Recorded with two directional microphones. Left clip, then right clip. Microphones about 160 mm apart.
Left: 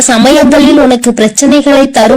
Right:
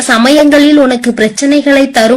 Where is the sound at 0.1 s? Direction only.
25° left (ahead or behind).